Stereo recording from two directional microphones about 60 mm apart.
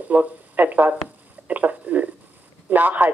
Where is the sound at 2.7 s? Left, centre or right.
Right.